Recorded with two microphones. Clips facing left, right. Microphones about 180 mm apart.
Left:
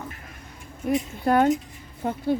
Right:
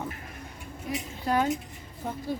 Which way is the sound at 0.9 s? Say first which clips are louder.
Left 8 dB; 55° left (ahead or behind).